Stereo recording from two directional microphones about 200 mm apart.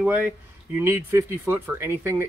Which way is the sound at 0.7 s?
10° right (ahead or behind).